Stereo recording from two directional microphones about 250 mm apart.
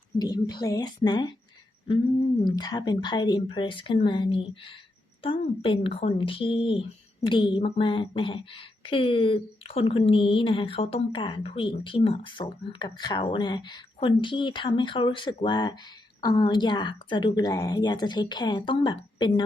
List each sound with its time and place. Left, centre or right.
0.2 s speech: centre
2.4 s speech: centre